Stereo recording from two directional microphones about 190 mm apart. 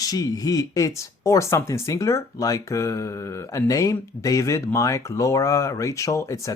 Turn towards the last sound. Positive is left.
turn(degrees=15)  # may be behind; listen again after turning